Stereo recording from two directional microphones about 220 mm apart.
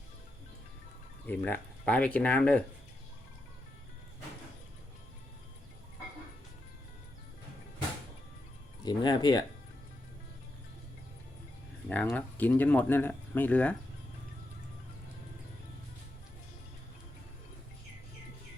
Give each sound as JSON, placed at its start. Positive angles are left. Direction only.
{"t": 1.3, "sound": "speech", "side_deg": 10}
{"t": 8.8, "sound": "speech", "side_deg": 20}
{"t": 11.9, "sound": "speech", "side_deg": 5}